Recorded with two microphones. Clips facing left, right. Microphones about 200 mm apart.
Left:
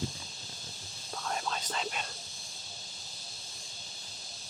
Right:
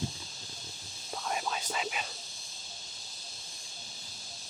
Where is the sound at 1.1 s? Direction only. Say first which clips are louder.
Right 1 dB; 10° right (ahead or behind).